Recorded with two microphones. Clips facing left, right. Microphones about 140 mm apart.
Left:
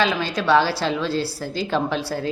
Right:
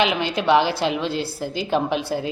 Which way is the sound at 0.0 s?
20° right (ahead or behind).